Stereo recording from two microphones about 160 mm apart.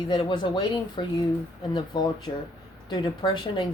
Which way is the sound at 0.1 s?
30° left (ahead or behind).